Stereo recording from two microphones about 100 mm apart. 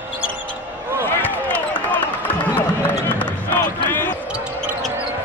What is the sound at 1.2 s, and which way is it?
Basketball bounce, 20° left (ahead or behind).